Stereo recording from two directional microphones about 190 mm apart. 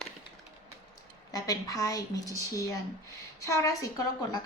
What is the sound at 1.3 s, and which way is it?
A woman's voice, 20° left (ahead or behind).